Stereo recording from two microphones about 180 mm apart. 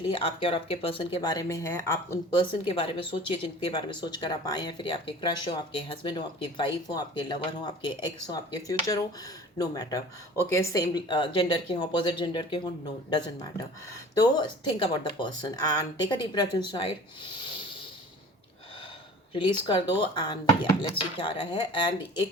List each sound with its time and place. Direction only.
0.1 s speech: 30° left (ahead or behind)
2.4 s speech: 30° left (ahead or behind)
13.9 s speech: 25° left (ahead or behind)
19.3 s speech: 25° left (ahead or behind)